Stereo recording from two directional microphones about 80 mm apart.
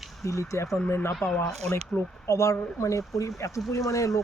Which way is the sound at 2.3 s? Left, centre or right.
Left.